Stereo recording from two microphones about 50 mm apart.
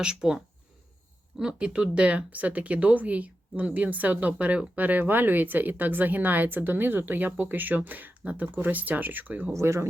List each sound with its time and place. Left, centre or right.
0.0 s speech: centre
1.4 s speech: centre; by 9.5 s right
9.6 s speech: right